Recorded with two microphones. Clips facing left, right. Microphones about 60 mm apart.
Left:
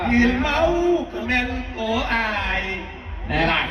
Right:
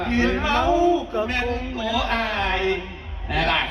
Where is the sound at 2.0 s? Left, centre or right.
Left.